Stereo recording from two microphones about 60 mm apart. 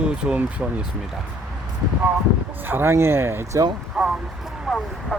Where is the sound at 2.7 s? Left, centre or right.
Right.